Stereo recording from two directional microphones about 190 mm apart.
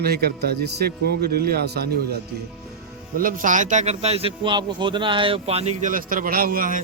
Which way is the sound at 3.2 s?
45° right (ahead or behind).